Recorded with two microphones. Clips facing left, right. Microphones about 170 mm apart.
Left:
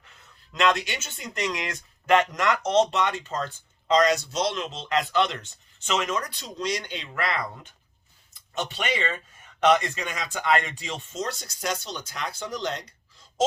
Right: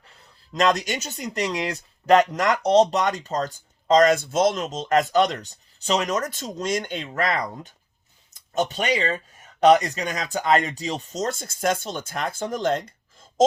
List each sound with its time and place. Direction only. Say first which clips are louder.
0.0 s speech: right 2 dB; 35° right (ahead or behind); by 13.4 s 50° right (ahead or behind)